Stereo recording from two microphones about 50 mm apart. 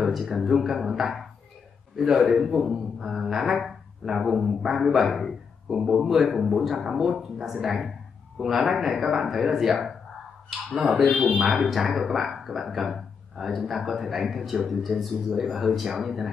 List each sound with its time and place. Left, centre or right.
0.3 s a man's voice: centre
11.3 s speech: centre